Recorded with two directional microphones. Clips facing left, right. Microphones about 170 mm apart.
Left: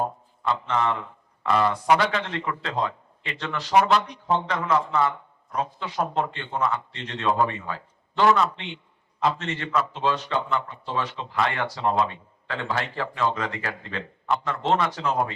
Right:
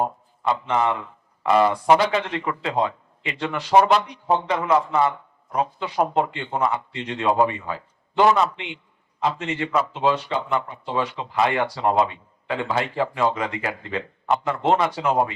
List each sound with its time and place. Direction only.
0.0 s speech: 15° right (ahead or behind)